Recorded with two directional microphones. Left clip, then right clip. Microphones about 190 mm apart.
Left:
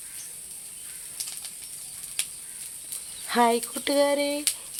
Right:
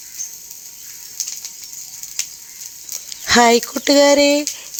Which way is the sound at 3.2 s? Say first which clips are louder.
Right 10 dB; 30° right (ahead or behind).